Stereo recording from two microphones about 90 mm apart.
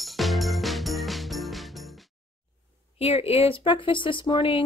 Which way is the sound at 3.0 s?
90° left.